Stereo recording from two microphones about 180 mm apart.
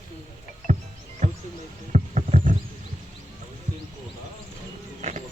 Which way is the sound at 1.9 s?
40° right (ahead or behind).